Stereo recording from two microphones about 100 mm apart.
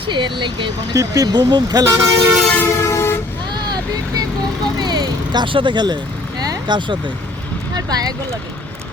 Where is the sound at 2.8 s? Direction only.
25° left (ahead or behind).